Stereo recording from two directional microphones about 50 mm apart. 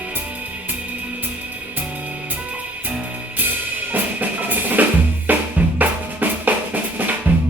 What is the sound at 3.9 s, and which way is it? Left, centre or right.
Drum, right.